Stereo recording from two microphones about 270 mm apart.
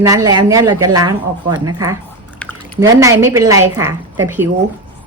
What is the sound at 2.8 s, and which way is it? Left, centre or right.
Speech, centre.